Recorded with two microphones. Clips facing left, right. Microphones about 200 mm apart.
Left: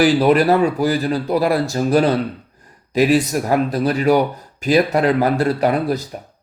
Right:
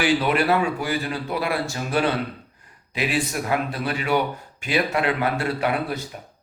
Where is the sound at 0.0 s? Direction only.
40° left (ahead or behind).